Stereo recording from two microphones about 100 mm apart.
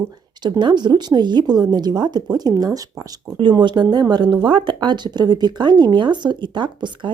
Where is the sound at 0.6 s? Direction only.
45° right (ahead or behind).